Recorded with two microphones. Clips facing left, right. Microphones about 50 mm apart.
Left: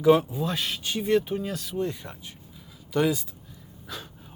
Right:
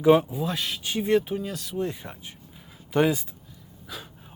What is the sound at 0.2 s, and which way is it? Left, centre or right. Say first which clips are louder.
Speech: right 1 dB; centre.